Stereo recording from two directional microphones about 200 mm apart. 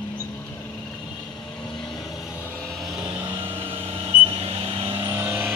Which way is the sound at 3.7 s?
30° right (ahead or behind).